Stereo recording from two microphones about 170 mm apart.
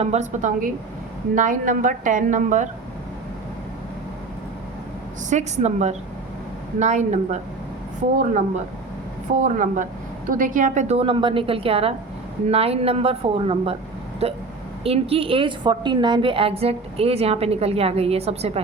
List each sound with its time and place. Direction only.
0.0 s a woman's voice: 40° right (ahead or behind)
5.3 s a woman's voice: 45° right (ahead or behind)
9.4 s a woman's voice: 50° right (ahead or behind)